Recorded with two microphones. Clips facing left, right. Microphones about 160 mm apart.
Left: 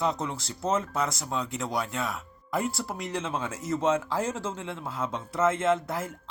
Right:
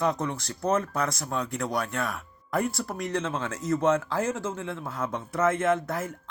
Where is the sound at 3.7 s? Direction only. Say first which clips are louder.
Right 2 dB; 25° left (ahead or behind).